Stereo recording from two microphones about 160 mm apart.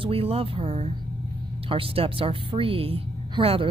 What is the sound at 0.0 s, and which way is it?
Speech, 35° right (ahead or behind).